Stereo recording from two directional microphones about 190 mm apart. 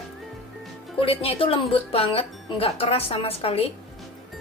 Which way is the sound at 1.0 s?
30° left (ahead or behind).